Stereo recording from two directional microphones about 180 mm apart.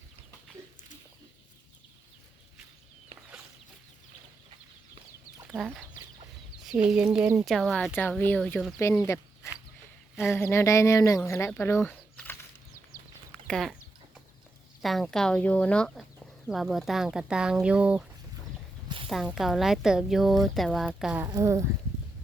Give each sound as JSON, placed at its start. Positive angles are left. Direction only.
{"t": 5.5, "sound": "speech", "side_deg": 0}
{"t": 13.5, "sound": "chicken", "side_deg": 0}
{"t": 14.8, "sound": "speech", "side_deg": 0}
{"t": 19.0, "sound": "speech", "side_deg": 0}
{"t": 21.2, "sound": "speech", "side_deg": -20}